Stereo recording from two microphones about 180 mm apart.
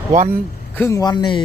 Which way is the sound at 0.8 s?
20° left (ahead or behind).